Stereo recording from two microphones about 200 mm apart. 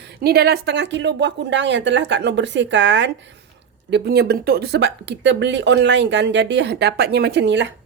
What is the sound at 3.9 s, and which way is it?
A woman's voice, 50° right (ahead or behind).